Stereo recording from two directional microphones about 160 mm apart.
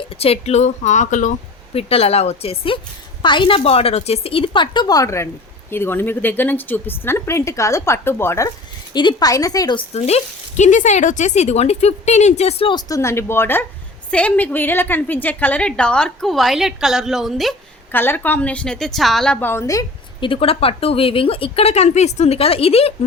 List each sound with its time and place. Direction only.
0.1 s speech: 40° left (ahead or behind)
1.7 s a woman's voice: 40° left (ahead or behind)
10.6 s speech: 50° left (ahead or behind)
12.7 s a woman's voice: 20° left (ahead or behind); by 17.5 s centre (ahead or behind)
17.9 s a woman's voice: 15° left (ahead or behind)
20.2 s speech: 35° left (ahead or behind)